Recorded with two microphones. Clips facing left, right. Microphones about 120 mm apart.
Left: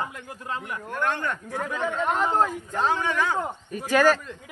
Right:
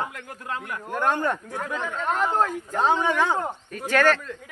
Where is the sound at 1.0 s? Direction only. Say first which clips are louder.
Right 4 dB; 35° right (ahead or behind).